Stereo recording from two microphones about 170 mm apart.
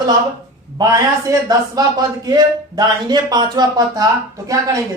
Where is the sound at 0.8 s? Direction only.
20° right (ahead or behind).